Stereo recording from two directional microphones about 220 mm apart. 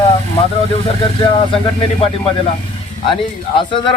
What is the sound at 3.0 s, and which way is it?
Speech, 20° left (ahead or behind).